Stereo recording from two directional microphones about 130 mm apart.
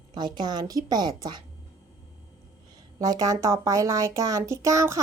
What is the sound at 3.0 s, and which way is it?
Speech, 30° right (ahead or behind).